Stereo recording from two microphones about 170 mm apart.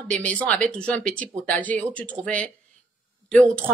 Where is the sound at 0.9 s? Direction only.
5° left (ahead or behind).